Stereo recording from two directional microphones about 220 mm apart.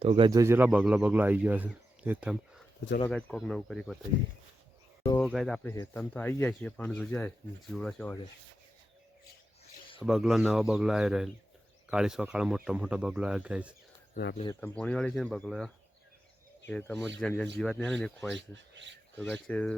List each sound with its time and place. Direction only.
0.0 s speech: 25° right (ahead or behind); by 3.9 s centre (ahead or behind)
5.1 s speech: centre (ahead or behind)
5.7 s speech: 15° left (ahead or behind)
10.0 s speech: centre (ahead or behind)
16.8 s speech: centre (ahead or behind)
18.3 s speech: 55° right (ahead or behind)
19.2 s speech: 5° left (ahead or behind)